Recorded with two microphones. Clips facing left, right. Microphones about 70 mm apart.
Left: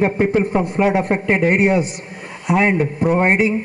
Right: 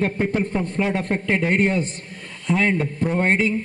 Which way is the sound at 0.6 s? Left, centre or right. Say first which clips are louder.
Left 6 dB; centre.